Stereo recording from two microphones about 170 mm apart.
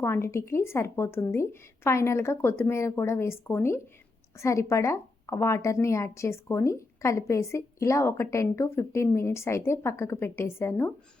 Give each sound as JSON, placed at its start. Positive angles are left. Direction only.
{"t": 0.0, "sound": "a woman's voice", "side_deg": 15}